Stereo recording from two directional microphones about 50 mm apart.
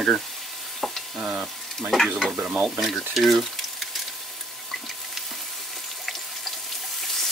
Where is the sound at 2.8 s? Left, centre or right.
Centre.